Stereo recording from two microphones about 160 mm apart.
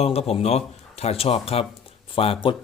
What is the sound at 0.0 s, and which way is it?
A man's voice, 40° left (ahead or behind).